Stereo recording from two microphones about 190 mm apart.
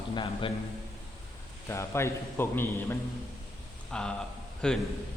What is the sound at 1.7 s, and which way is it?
A man's voice, 15° left (ahead or behind).